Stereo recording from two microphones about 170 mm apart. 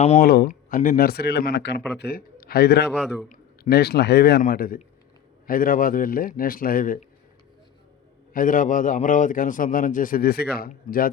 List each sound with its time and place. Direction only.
0.2 s a man's voice: 65° left (ahead or behind); by 1.7 s 80° left
2.0 s a man's voice: 65° left (ahead or behind)
8.3 s a man's voice: 50° left (ahead or behind); by 10.7 s 70° left (ahead or behind)
10.7 s a man's voice: 55° left (ahead or behind)